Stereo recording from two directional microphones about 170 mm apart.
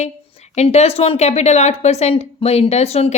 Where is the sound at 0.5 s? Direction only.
40° left (ahead or behind).